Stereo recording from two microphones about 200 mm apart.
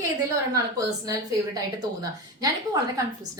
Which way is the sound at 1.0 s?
15° right (ahead or behind).